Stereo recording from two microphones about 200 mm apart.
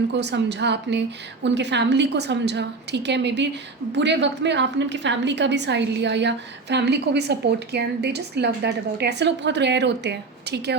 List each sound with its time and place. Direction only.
0.2 s a woman's voice: 60° right (ahead or behind)